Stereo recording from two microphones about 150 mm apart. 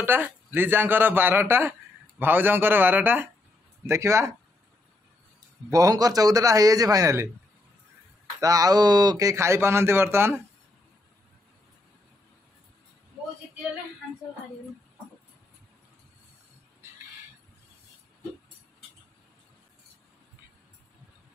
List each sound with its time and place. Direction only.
0.0 s a man's voice: 15° right (ahead or behind)
5.7 s speech: 25° right (ahead or behind)
8.4 s speech: 25° right (ahead or behind)